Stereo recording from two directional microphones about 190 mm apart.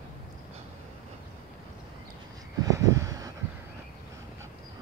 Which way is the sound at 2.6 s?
15° right (ahead or behind).